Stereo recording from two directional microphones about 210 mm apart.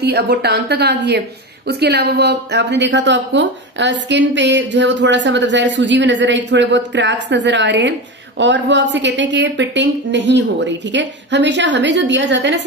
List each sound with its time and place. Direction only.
0.0 s a woman's voice: 50° right (ahead or behind)